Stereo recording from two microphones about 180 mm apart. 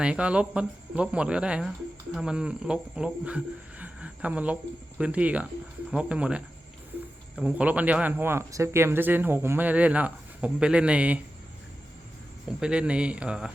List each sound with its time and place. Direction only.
0.0 s speech: 5° right (ahead or behind)
12.5 s speech: 5° right (ahead or behind)